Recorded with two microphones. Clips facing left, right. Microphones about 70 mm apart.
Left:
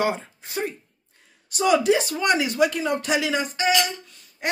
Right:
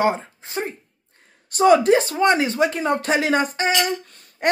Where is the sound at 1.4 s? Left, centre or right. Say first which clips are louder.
Right 5 dB; right.